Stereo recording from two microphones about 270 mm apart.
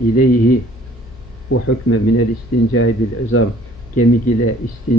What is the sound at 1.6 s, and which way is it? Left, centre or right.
Speech, left.